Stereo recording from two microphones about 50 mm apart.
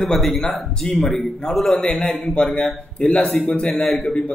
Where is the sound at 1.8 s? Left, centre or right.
Centre.